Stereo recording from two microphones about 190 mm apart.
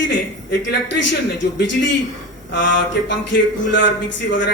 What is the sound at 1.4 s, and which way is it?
A man's voice, 70° left (ahead or behind).